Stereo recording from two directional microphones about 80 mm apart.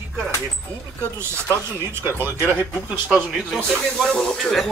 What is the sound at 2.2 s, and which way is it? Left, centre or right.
Speech, right.